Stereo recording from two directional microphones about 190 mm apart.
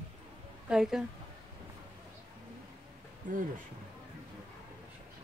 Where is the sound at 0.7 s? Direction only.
5° right (ahead or behind).